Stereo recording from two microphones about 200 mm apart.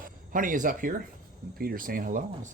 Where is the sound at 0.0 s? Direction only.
40° right (ahead or behind).